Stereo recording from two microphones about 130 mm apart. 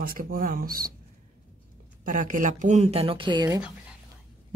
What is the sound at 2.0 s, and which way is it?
Speech, 85° right.